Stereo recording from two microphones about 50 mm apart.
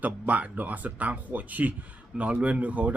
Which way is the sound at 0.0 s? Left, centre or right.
Right.